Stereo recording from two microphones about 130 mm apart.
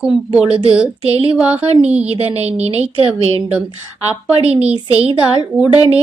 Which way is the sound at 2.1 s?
50° right (ahead or behind).